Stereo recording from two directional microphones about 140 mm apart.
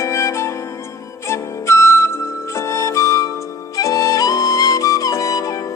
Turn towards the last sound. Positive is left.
turn(degrees=25)  # may be behind; listen again after turning